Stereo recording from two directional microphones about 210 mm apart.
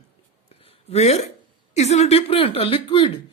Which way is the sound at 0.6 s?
30° left (ahead or behind).